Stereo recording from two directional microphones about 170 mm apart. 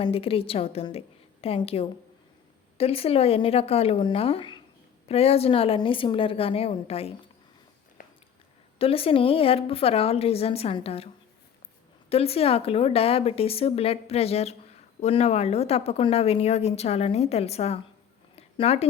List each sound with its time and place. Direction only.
0.0 s speech: 35° left (ahead or behind)
8.8 s speech: 35° left (ahead or behind)
18.3 s a sound: 40° left (ahead or behind)